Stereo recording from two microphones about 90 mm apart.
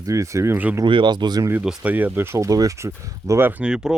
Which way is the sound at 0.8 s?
60° right (ahead or behind).